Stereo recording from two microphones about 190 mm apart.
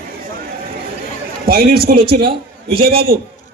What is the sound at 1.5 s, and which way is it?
A man's voice, 55° right (ahead or behind).